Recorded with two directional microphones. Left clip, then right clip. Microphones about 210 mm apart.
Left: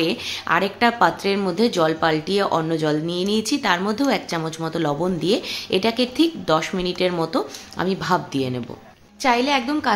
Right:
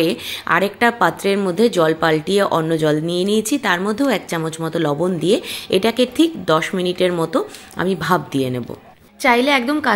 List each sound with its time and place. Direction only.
0.0 s speech: 15° right (ahead or behind)